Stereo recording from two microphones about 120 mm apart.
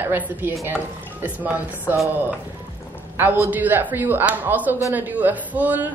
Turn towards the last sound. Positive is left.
turn(degrees=-15)  # may be behind; listen again after turning